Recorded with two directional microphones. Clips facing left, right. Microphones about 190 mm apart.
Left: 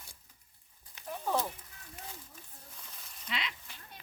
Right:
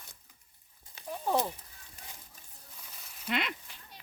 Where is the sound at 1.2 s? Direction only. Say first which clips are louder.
Right 3 dB; 20° right (ahead or behind).